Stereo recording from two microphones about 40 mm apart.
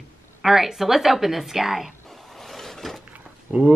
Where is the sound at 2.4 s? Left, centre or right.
Centre.